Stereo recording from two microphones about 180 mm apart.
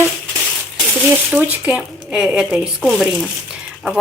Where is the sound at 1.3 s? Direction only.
5° right (ahead or behind).